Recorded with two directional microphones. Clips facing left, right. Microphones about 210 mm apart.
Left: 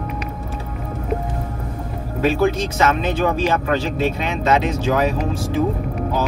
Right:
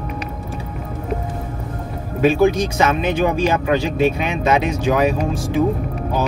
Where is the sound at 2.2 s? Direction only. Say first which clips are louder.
Right 3 dB; 15° right (ahead or behind).